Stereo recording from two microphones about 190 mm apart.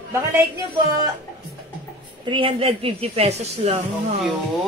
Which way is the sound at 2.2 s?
25° right (ahead or behind).